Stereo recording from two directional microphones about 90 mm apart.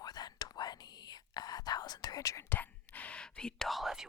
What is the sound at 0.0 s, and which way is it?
Whispering, 50° left (ahead or behind).